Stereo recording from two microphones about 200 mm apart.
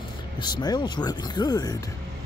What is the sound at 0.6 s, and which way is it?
Speech, 20° left (ahead or behind).